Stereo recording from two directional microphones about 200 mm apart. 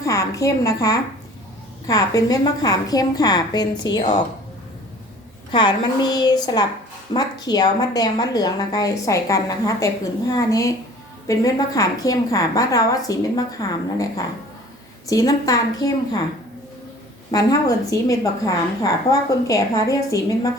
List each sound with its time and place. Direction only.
0.0 s a woman's voice: 15° left (ahead or behind)
5.5 s a woman's voice: 20° left (ahead or behind)
17.3 s a woman's voice: 15° left (ahead or behind)